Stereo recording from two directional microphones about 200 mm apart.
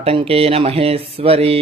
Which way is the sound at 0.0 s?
30° right (ahead or behind).